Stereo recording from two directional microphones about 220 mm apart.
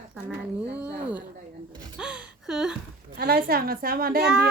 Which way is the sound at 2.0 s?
5° right (ahead or behind).